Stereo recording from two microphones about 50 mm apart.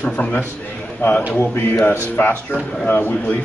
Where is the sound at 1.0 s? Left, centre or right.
Left.